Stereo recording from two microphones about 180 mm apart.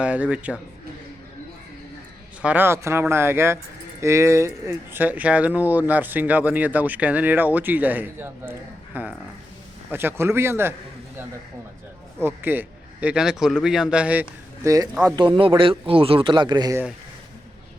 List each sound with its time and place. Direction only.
0.0 s speech: 5° right (ahead or behind)
2.4 s speech: 10° right (ahead or behind)
12.2 s speech: 10° right (ahead or behind)